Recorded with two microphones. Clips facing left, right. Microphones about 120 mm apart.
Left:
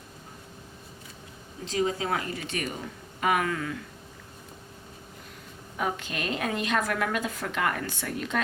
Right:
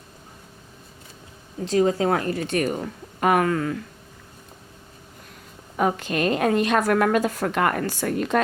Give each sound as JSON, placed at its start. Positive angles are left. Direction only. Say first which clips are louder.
{"t": 1.7, "sound": "a woman's voice", "louder": "right 8 dB", "side_deg": -45}
{"t": 5.7, "sound": "a woman's voice", "louder": "right 8 dB", "side_deg": -45}